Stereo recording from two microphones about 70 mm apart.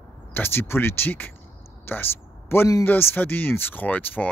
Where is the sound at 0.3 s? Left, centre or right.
Left.